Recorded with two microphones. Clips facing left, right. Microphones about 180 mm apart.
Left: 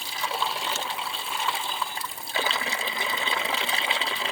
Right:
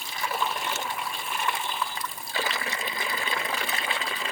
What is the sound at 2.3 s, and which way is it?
Sewing machine, 25° left (ahead or behind).